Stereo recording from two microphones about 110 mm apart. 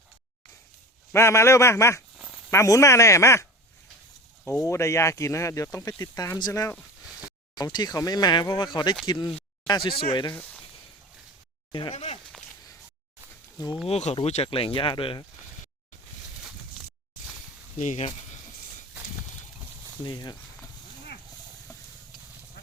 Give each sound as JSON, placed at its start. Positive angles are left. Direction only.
{"t": 1.1, "sound": "speech", "side_deg": 25}
{"t": 4.6, "sound": "speech", "side_deg": 25}
{"t": 11.7, "sound": "speech", "side_deg": 55}
{"t": 13.8, "sound": "speech", "side_deg": 75}
{"t": 17.7, "sound": "speech", "side_deg": 90}
{"t": 20.1, "sound": "speech", "side_deg": 40}